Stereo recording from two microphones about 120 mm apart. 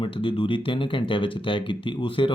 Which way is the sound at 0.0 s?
45° left (ahead or behind).